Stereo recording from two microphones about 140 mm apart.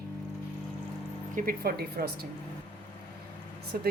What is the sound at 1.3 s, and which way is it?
Speech, 80° right.